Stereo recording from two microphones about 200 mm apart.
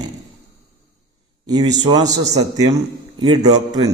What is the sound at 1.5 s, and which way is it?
Speech, 20° right (ahead or behind).